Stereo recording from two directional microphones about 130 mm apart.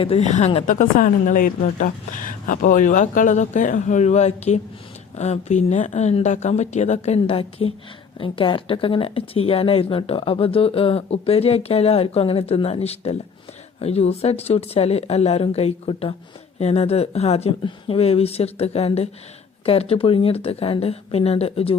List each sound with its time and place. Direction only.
0.0 s speech: 55° left (ahead or behind)
0.6 s speech: 85° left; by 21.8 s 50° left (ahead or behind)